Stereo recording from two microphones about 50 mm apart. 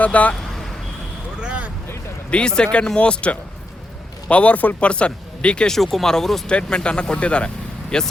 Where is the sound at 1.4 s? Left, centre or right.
Right.